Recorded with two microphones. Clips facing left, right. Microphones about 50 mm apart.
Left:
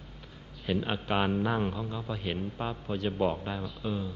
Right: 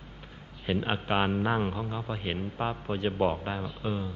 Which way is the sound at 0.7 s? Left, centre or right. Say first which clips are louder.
Right 1 dB; right.